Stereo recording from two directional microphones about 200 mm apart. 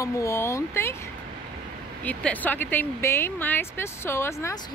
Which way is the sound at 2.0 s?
10° left (ahead or behind).